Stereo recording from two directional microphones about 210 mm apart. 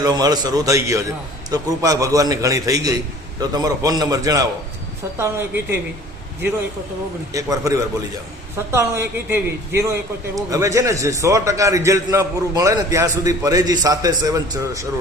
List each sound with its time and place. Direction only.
0.0 s a man's voice: 20° right (ahead or behind)
7.3 s a man's voice: 15° right (ahead or behind)